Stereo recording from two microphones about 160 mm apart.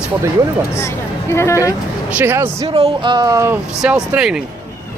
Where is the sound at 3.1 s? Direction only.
20° right (ahead or behind).